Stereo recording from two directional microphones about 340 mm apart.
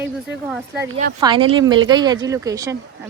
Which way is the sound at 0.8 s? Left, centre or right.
Right.